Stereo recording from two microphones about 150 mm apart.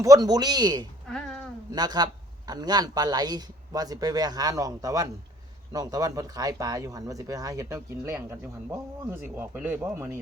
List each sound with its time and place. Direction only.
0.0 s speech: 25° right (ahead or behind)
1.0 s a sound: 5° left (ahead or behind)
1.7 s speech: 30° right (ahead or behind)